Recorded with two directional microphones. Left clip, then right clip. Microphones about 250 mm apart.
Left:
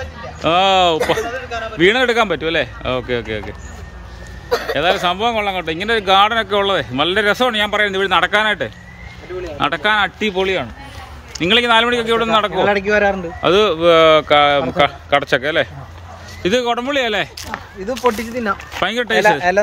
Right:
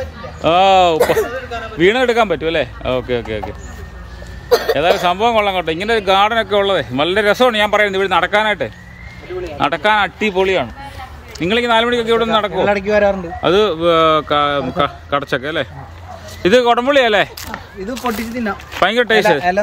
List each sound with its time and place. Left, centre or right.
0.4 s a man's voice: centre
4.5 s a sound: right
4.7 s a man's voice: centre
16.4 s speech: centre
17.5 s speech: centre
18.7 s speech: centre